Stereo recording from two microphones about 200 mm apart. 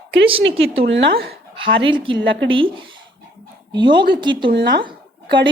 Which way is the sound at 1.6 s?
25° right (ahead or behind).